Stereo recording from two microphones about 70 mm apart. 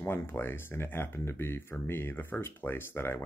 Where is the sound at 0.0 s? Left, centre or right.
Left.